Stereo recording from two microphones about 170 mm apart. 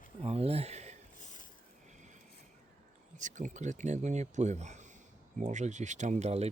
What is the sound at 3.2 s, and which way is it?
Speech, 45° right (ahead or behind).